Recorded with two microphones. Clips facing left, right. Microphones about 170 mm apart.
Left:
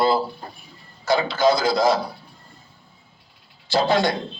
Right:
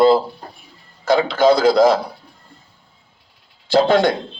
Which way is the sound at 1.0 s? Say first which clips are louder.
Right 5 dB; 55° right (ahead or behind).